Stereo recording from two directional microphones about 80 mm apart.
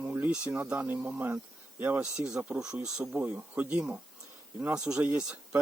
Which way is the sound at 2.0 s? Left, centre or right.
Centre.